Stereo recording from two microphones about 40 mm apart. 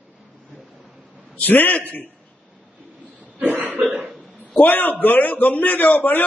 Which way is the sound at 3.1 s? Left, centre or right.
Right.